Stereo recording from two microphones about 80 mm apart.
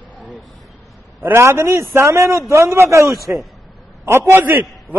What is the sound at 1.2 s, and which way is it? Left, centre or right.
A man's voice, right.